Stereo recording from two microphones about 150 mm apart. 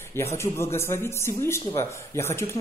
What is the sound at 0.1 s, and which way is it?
A man's voice, 15° left (ahead or behind).